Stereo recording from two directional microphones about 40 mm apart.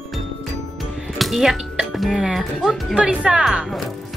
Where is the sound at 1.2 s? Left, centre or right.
Centre.